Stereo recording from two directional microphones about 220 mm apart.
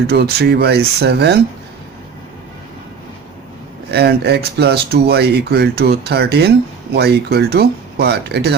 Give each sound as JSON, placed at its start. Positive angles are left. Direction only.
{"t": 0.1, "sound": "speech", "side_deg": -45}
{"t": 3.9, "sound": "speech", "side_deg": -50}